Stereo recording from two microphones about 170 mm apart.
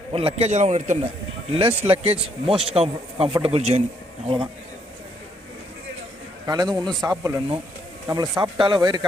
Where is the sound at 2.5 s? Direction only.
35° right (ahead or behind).